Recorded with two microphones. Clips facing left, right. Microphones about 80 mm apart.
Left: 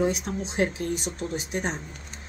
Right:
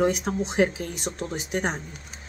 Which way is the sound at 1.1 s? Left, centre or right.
Right.